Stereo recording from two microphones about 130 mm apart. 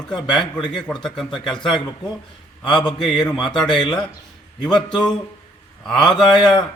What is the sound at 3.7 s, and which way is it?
Speech, 35° left (ahead or behind).